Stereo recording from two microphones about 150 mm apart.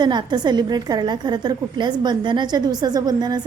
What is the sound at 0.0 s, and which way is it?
A woman's voice, 30° right (ahead or behind).